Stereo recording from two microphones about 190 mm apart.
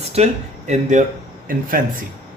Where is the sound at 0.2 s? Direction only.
35° right (ahead or behind).